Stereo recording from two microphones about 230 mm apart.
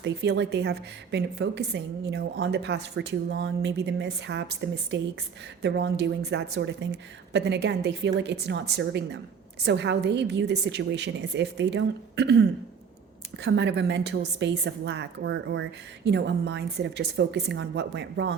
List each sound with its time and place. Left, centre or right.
0.0 s a woman's voice: right
13.4 s a woman's voice: right